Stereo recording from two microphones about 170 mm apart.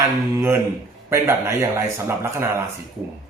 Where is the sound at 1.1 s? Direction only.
15° right (ahead or behind).